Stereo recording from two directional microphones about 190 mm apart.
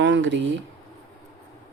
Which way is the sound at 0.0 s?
70° right (ahead or behind).